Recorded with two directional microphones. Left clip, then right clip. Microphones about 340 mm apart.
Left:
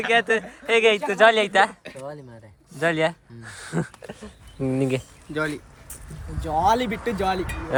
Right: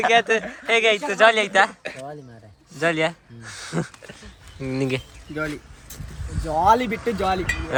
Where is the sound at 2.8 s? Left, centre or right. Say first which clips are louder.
Even; centre.